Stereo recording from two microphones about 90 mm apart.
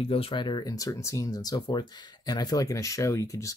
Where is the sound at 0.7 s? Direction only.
40° left (ahead or behind).